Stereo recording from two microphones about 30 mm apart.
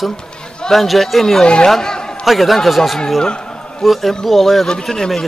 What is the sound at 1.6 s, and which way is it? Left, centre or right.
Speech, centre.